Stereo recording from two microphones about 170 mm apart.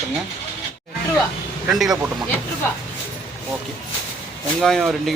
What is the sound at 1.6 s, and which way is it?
Speech, centre (ahead or behind).